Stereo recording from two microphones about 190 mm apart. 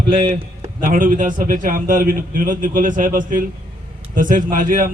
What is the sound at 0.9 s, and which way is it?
A man's voice, 45° right (ahead or behind).